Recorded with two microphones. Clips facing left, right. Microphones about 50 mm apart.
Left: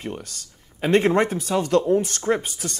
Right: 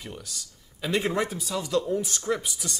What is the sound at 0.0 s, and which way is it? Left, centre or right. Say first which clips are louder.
Speech: left 7 dB; left.